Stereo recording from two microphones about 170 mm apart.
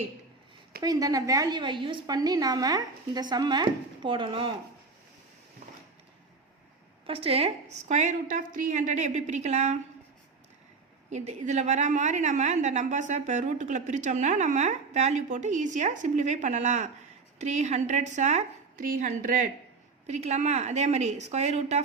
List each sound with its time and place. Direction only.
0.8 s a woman's voice: 20° right (ahead or behind)
7.1 s a woman's voice: 35° right (ahead or behind)
11.1 s a woman's voice: 40° right (ahead or behind)